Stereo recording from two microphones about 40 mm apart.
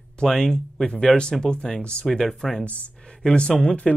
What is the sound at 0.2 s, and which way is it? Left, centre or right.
Speech, centre.